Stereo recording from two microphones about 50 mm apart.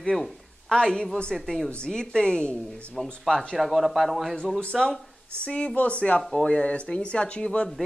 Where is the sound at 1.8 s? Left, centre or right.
Centre.